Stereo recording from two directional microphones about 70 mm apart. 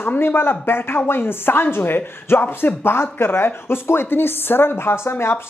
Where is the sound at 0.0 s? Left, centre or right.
Left.